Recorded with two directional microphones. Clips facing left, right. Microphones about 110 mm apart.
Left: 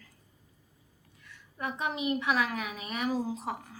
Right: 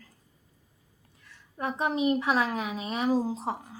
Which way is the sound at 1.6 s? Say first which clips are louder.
Right 6 dB; 35° right (ahead or behind).